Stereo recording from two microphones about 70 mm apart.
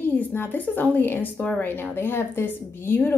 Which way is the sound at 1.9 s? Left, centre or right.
Left.